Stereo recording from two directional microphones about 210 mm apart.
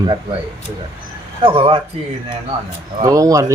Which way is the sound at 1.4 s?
25° right (ahead or behind).